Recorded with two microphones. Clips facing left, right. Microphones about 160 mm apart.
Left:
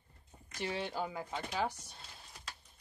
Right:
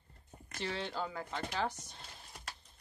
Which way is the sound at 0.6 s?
15° left (ahead or behind).